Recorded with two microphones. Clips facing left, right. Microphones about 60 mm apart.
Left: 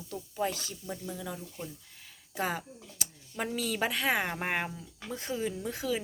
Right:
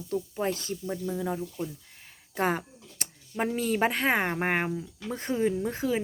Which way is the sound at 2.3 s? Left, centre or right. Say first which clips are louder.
Right 5 dB; right.